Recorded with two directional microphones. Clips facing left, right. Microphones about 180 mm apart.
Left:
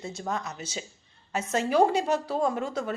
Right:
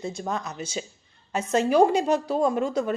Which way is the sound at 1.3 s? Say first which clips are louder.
Right 4 dB; 15° right (ahead or behind).